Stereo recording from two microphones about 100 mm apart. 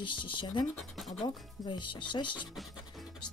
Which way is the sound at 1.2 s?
50° left (ahead or behind).